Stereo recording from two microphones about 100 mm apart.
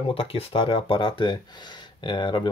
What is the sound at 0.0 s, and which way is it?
Speech, 65° left (ahead or behind).